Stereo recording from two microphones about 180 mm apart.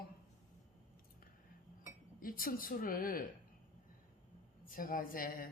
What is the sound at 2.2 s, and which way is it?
Speech, 50° left (ahead or behind).